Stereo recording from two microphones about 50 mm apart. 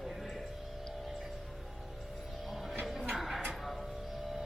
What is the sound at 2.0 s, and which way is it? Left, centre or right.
Music, centre.